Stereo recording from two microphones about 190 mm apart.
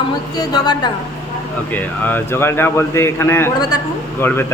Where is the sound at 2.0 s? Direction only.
10° left (ahead or behind).